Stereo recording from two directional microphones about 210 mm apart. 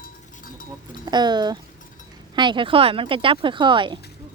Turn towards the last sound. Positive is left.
turn(degrees=-20)  # may be behind; listen again after turning